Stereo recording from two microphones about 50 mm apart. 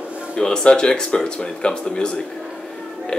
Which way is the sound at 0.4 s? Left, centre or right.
Centre.